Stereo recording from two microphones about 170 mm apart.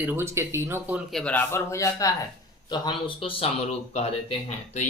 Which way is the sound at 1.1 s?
5° left (ahead or behind).